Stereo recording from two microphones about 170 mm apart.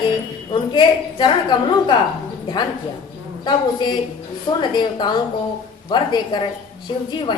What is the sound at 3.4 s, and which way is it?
A woman's voice, 25° left (ahead or behind).